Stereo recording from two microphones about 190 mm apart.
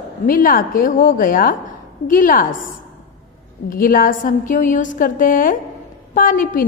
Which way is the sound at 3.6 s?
50° left (ahead or behind).